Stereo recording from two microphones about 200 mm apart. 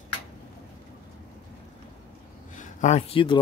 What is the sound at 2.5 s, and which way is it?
Speech, 35° left (ahead or behind).